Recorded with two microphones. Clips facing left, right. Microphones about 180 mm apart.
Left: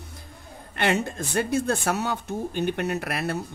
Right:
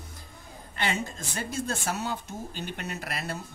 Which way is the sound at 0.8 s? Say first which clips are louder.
Left 7 dB; 65° left (ahead or behind).